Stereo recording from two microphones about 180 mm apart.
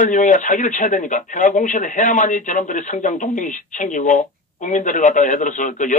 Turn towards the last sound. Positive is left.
turn(degrees=45)  # may be behind; listen again after turning